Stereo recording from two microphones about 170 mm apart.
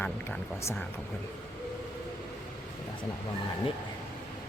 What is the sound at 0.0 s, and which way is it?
Speech, 15° left (ahead or behind).